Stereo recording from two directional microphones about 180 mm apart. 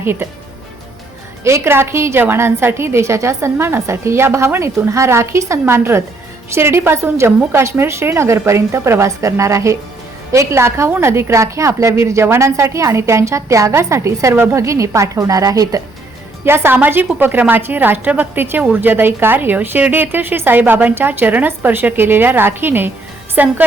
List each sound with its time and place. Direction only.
0.0 s speech: 10° right (ahead or behind)
1.5 s a woman's voice: 15° right (ahead or behind)